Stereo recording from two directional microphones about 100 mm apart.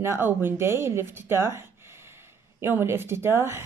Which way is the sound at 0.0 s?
25° right (ahead or behind).